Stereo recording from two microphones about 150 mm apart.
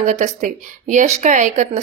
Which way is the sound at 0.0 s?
55° right (ahead or behind).